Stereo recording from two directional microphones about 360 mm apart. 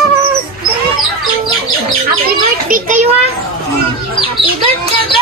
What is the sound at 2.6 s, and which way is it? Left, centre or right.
Speech, right.